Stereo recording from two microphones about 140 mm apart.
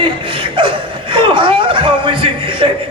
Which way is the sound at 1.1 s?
35° right (ahead or behind).